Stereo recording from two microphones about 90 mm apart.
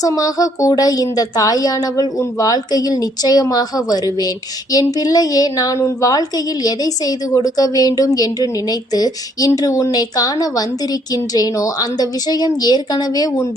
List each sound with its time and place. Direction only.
0.0 s speech: 40° left (ahead or behind)